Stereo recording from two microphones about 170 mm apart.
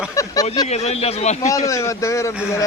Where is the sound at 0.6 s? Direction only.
40° left (ahead or behind).